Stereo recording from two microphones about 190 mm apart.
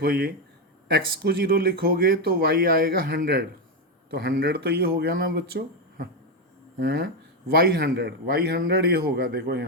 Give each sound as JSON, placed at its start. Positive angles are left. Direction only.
{"t": 0.0, "sound": "a man's voice", "side_deg": -55}